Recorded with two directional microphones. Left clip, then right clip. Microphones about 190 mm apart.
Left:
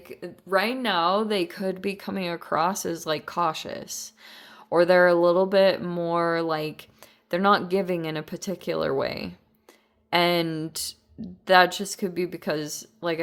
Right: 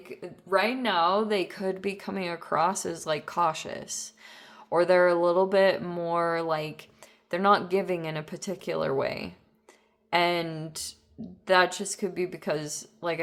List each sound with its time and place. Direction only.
0.0 s speech: 30° left (ahead or behind)